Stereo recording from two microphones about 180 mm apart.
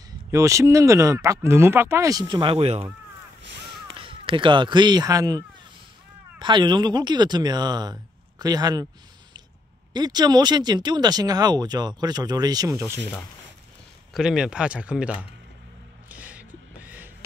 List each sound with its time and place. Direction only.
0.3 s speech: 15° right (ahead or behind); by 2.9 s 30° right (ahead or behind)
3.9 s speech: 30° right (ahead or behind)
6.4 s speech: 25° right (ahead or behind)
9.9 s speech: 20° right (ahead or behind)
14.1 s speech: 5° right (ahead or behind)
16.1 s gasp: 10° right (ahead or behind)